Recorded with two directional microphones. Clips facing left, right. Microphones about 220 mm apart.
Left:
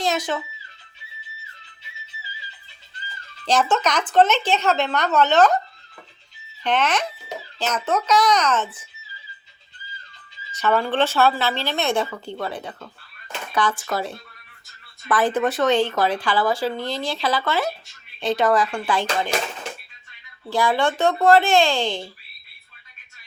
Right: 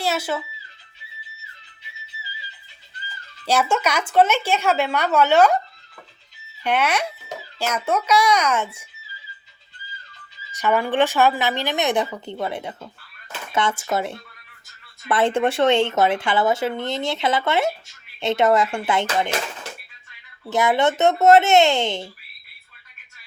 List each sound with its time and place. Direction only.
0.0 s speech: 10° right (ahead or behind)
3.4 s a woman's voice: 10° right (ahead or behind)
6.6 s a woman's voice: 10° right (ahead or behind)
10.5 s a woman's voice: 15° right (ahead or behind)
20.5 s speech: 20° right (ahead or behind)